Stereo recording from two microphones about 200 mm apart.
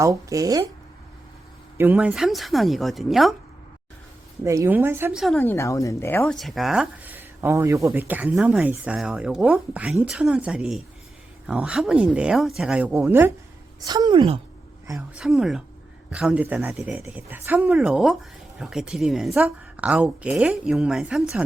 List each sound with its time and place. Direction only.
0.0 s speech: 15° right (ahead or behind)
1.8 s speech: 10° right (ahead or behind)
4.4 s speech: 15° right (ahead or behind)
5.2 s speech: 5° left (ahead or behind); by 13.3 s 10° right (ahead or behind)
13.8 s a woman's voice: 20° right (ahead or behind)
14.9 s speech: centre (ahead or behind)